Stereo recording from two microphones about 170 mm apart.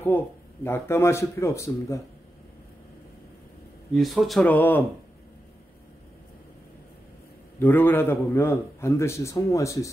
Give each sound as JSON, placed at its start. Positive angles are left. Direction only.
{"t": 0.1, "sound": "a man's voice", "side_deg": 10}
{"t": 3.9, "sound": "speech", "side_deg": 0}
{"t": 7.5, "sound": "a man's voice", "side_deg": 10}